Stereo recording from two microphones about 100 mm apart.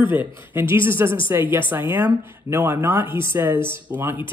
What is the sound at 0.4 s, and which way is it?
A woman's voice, 20° right (ahead or behind).